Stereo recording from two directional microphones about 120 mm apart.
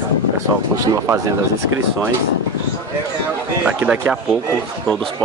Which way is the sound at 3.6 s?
15° right (ahead or behind).